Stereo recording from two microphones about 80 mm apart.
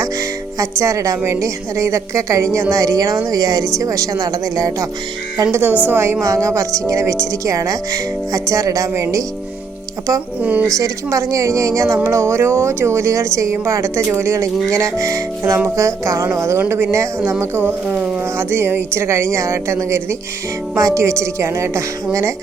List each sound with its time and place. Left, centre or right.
0.6 s a woman's voice: right
5.4 s a woman's voice: right
10.4 s speech: centre
10.8 s a woman's voice: right